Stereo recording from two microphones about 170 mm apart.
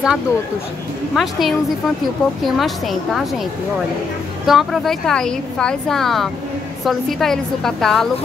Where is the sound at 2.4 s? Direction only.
Centre (ahead or behind).